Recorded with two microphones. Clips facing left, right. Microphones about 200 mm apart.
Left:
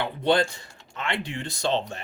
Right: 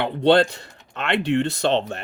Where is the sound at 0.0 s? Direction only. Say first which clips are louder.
Right 6 dB; 65° right (ahead or behind).